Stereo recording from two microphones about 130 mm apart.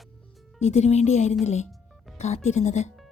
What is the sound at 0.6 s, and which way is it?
A woman's voice, 55° left (ahead or behind).